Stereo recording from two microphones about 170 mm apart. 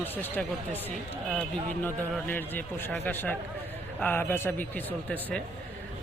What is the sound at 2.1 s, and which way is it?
Speech, 10° left (ahead or behind).